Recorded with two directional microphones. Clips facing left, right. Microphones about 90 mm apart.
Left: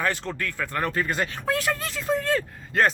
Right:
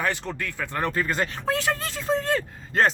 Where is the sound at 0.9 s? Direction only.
35° right (ahead or behind).